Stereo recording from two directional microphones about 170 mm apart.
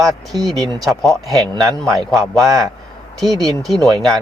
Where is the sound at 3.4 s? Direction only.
Centre (ahead or behind).